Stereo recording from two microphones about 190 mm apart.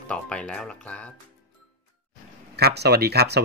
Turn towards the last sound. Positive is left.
turn(degrees=-60)  # may be behind; listen again after turning